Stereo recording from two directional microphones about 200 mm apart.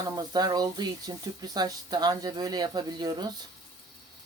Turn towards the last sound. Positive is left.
turn(degrees=-20)  # may be behind; listen again after turning